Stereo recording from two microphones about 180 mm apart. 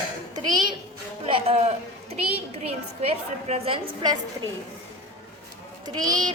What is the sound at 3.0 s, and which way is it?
A woman's voice, 35° right (ahead or behind).